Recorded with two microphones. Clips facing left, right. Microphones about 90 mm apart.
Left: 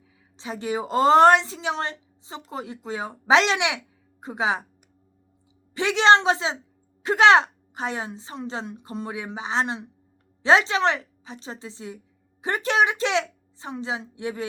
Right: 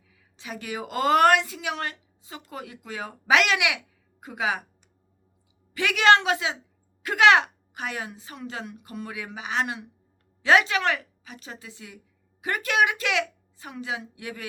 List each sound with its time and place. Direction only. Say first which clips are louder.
0.3 s a woman's voice: left 6 dB; 25° left (ahead or behind)
5.7 s a woman's voice: left 2 dB; 25° left (ahead or behind)